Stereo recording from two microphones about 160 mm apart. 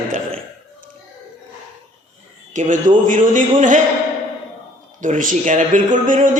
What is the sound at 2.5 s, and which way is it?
Speech, 55° right (ahead or behind).